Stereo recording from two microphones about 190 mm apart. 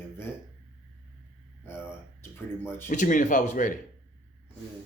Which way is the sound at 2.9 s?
45° left (ahead or behind).